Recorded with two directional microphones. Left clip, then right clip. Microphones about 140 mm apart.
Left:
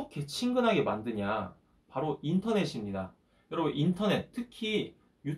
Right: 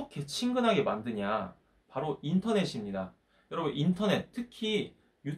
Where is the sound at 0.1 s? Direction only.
20° right (ahead or behind).